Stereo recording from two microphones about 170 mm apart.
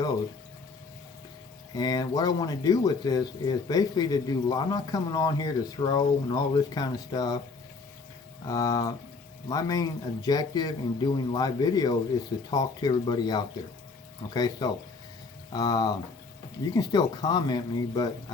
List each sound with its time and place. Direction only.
1.7 s speech: 25° left (ahead or behind)
8.4 s speech: 20° left (ahead or behind)